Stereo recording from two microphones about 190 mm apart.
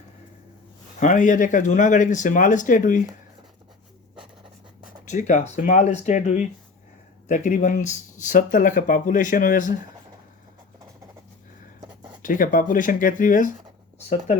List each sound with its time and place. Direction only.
0.9 s speech: 40° left (ahead or behind)
5.0 s speech: 40° left (ahead or behind)
12.2 s speech: 45° left (ahead or behind)